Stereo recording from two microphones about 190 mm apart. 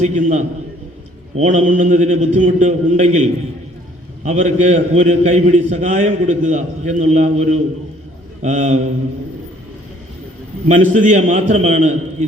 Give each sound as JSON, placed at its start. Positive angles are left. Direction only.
{"t": 0.0, "sound": "a man's voice", "side_deg": -40}
{"t": 10.7, "sound": "a man's voice", "side_deg": -40}